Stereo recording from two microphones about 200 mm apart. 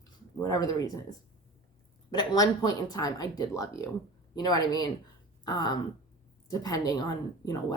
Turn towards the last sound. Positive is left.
turn(degrees=20)  # may be behind; listen again after turning